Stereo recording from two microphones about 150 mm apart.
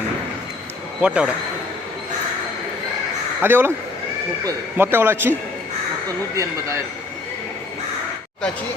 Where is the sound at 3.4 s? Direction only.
15° right (ahead or behind).